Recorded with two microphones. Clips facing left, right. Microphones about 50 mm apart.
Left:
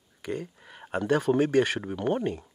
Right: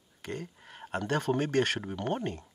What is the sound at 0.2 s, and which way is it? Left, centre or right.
Speech, centre.